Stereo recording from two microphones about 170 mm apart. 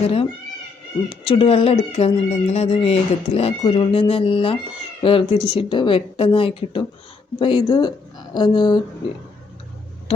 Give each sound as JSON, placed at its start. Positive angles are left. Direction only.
{"t": 0.0, "sound": "speech", "side_deg": 35}